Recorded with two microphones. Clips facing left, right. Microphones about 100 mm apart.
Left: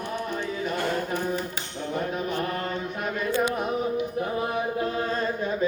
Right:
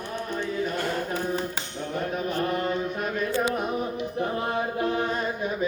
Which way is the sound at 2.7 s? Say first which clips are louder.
Right 2 dB; 5° right (ahead or behind).